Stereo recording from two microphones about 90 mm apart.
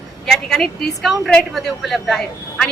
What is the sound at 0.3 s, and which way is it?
A woman's voice, 5° left (ahead or behind).